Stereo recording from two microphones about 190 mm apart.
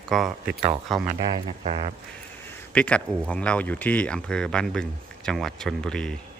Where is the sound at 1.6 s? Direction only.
35° right (ahead or behind).